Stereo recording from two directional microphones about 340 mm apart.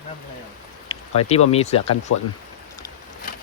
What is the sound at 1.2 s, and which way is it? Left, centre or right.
Speech, centre.